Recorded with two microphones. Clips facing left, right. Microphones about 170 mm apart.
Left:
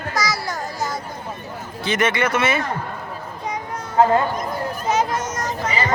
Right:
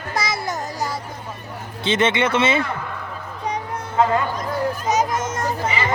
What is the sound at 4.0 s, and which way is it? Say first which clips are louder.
Speech: left 3 dB; 30° left (ahead or behind).